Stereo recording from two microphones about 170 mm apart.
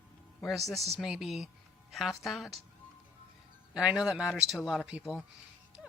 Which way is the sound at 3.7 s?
5° right (ahead or behind).